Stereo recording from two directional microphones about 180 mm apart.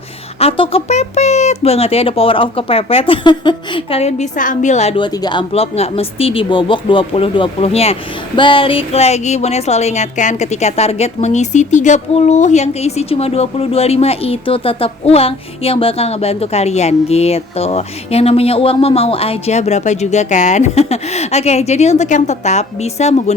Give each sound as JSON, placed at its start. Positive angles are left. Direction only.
{"t": 0.3, "sound": "a woman's voice", "side_deg": 30}